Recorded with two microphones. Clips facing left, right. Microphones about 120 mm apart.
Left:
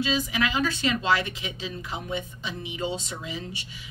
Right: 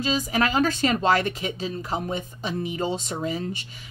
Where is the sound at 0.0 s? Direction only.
45° right (ahead or behind).